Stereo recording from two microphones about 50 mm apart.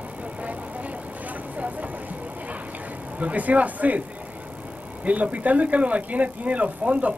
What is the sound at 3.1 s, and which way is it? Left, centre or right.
Speech, right.